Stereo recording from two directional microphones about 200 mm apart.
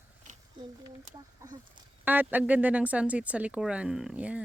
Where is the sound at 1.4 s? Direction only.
15° right (ahead or behind).